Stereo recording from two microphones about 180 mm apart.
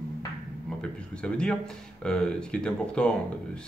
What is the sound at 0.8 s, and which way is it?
Speech, 5° left (ahead or behind).